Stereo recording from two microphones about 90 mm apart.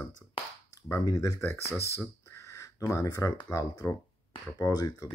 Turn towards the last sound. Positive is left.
turn(degrees=45)  # may be behind; listen again after turning